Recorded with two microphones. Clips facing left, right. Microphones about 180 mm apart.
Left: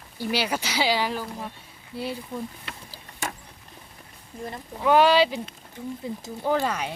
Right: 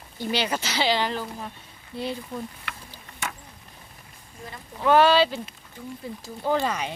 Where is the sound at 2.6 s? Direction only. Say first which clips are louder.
Even; 35° left (ahead or behind).